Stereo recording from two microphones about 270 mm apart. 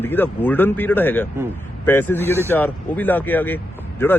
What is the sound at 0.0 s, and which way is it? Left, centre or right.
Speech, centre.